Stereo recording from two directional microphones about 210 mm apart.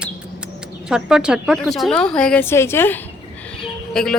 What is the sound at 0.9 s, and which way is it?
Speech, 5° right (ahead or behind).